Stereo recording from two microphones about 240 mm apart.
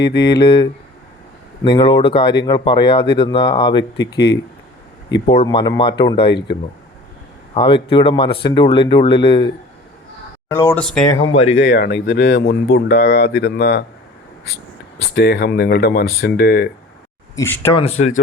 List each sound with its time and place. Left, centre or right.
0.2 s speech: centre
5.3 s speech: left
7.5 s speech: left
10.5 s speech: centre
11.1 s speech: left
11.5 s speech: left
15.0 s speech: left
17.3 s speech: centre
17.7 s speech: left